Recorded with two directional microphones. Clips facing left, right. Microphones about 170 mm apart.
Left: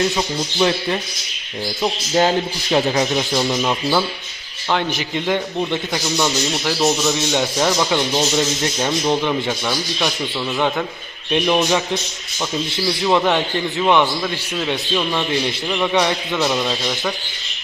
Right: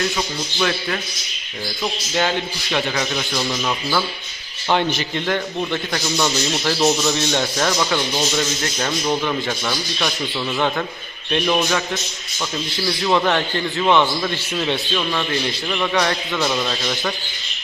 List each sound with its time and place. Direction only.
0.2 s speech: 25° left (ahead or behind)
1.8 s speech: 35° left (ahead or behind)
3.2 s a man's voice: 20° left (ahead or behind)
11.3 s a man's voice: 15° left (ahead or behind)
14.2 s a man's voice: centre (ahead or behind)
14.9 s a man's voice: 10° left (ahead or behind)